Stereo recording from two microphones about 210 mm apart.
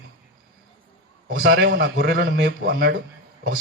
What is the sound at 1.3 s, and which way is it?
A man's voice, 50° right (ahead or behind).